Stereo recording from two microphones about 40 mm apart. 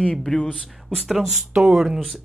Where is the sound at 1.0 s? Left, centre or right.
Centre.